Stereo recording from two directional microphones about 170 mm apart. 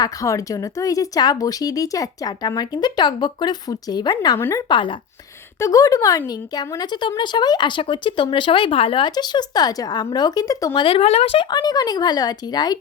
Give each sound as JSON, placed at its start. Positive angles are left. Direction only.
{"t": 0.0, "sound": "speech", "side_deg": 20}
{"t": 4.7, "sound": "speech", "side_deg": 30}
{"t": 5.5, "sound": "speech", "side_deg": 20}
{"t": 10.8, "sound": "speech", "side_deg": 35}